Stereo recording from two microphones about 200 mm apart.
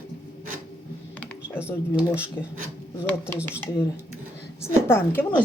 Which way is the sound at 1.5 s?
5° right (ahead or behind).